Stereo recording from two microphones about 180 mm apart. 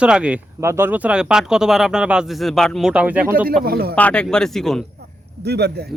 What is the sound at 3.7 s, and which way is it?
Speech, 60° right (ahead or behind).